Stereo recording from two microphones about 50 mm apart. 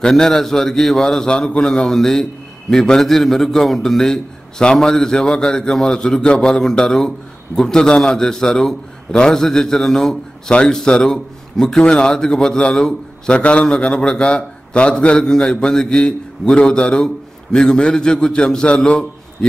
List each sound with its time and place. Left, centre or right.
0.0 s a man's voice: centre